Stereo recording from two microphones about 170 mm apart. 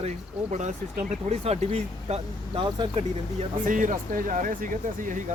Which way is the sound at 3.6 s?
50° right (ahead or behind).